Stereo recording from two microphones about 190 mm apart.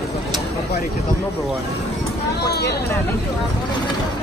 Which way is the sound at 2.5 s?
60° left (ahead or behind).